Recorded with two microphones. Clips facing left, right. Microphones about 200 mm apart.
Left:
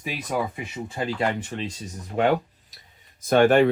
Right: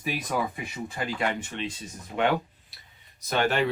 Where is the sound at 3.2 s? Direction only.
50° left (ahead or behind).